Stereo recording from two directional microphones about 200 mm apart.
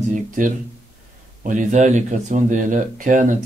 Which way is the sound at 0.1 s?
40° right (ahead or behind).